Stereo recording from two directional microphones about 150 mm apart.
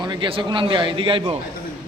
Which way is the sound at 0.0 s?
30° right (ahead or behind).